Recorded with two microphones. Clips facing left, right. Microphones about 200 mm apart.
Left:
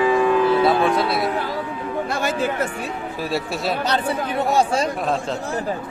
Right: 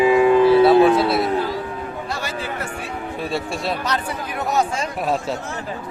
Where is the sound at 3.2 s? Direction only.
Centre (ahead or behind).